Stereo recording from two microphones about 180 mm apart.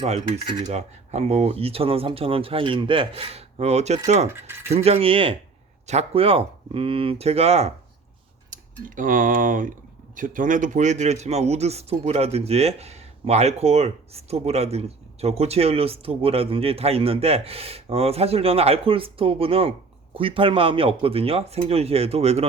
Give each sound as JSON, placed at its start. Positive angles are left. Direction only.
{"t": 0.0, "sound": "cutlery", "side_deg": -30}
{"t": 0.6, "sound": "a man's voice", "side_deg": -35}
{"t": 8.8, "sound": "a man's voice", "side_deg": -45}